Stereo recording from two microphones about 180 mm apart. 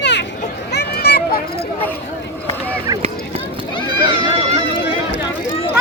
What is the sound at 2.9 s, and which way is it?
Run, 20° right (ahead or behind).